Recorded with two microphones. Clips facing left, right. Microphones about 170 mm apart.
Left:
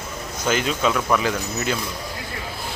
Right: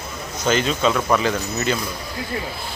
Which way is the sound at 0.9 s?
10° right (ahead or behind).